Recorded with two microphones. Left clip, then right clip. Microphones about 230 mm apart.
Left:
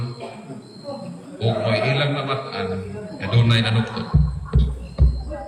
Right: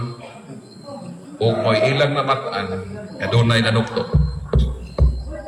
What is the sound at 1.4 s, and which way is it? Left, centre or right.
A man's voice, centre.